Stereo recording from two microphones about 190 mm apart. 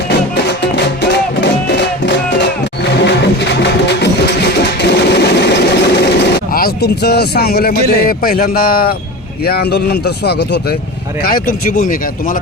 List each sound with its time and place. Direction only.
0.3 s music: 65° left (ahead or behind)
9.4 s speech: 55° left (ahead or behind)
11.2 s speech: 50° left (ahead or behind)